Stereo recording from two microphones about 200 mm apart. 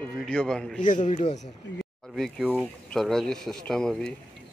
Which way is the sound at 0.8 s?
40° left (ahead or behind).